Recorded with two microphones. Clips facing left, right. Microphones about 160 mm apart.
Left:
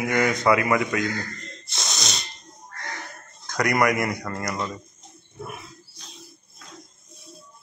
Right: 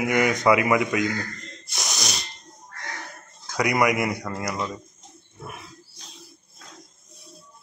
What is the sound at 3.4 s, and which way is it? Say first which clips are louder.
A man's voice: even; 10° right (ahead or behind).